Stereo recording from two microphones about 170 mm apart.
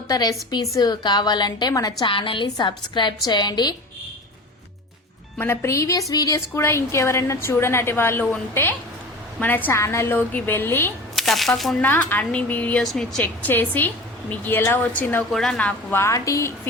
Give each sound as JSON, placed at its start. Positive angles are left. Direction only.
{"t": 0.1, "sound": "a woman's voice", "side_deg": 20}
{"t": 5.4, "sound": "speech", "side_deg": 15}
{"t": 11.2, "sound": "speech", "side_deg": 0}
{"t": 15.3, "sound": "speech", "side_deg": 0}